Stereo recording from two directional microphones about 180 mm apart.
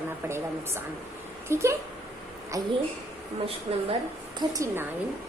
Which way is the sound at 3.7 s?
35° right (ahead or behind).